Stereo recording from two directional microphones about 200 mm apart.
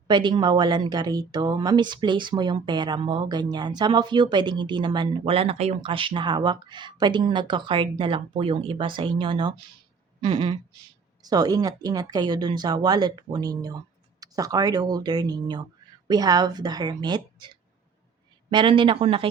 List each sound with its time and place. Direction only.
0.1 s a woman's voice: 20° right (ahead or behind)
10.2 s a sound: 20° right (ahead or behind)
11.2 s a woman's voice: 20° right (ahead or behind)